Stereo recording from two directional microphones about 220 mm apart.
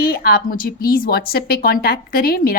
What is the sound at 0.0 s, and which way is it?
A woman's voice, 40° left (ahead or behind).